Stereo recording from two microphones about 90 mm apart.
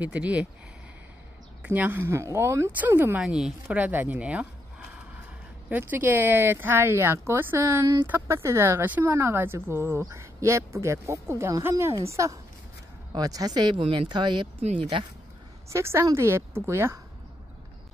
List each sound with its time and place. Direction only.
0.0 s speech: 15° right (ahead or behind)
1.6 s speech: 20° right (ahead or behind)
3.2 s speech: 5° right (ahead or behind)
3.8 s a sound: 20° right (ahead or behind)
5.7 s speech: 20° right (ahead or behind)
7.8 s a woman's voice: 40° right (ahead or behind)
8.1 s a woman's voice: 30° right (ahead or behind)
13.1 s speech: 45° right (ahead or behind); by 14.7 s 65° right (ahead or behind)
15.7 s a woman's voice: 30° right (ahead or behind)